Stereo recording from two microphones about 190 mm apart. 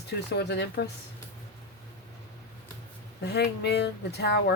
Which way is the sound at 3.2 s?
60° left (ahead or behind).